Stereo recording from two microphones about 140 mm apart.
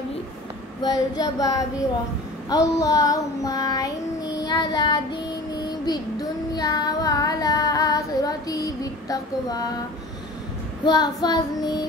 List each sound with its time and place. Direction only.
0.8 s child singing: 30° left (ahead or behind)
10.9 s child singing: 30° left (ahead or behind)